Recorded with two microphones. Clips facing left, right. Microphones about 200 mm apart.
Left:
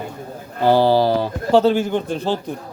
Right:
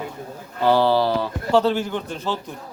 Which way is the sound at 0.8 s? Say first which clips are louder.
Left 3 dB; 45° left (ahead or behind).